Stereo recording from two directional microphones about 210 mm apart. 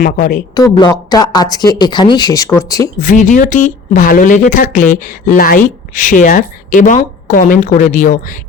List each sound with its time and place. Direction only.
0.0 s speech: 40° left (ahead or behind)
0.5 s speech: 15° left (ahead or behind)
3.0 s speech: 35° left (ahead or behind)